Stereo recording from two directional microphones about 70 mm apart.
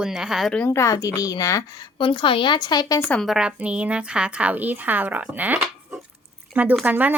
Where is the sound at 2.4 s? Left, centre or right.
Left.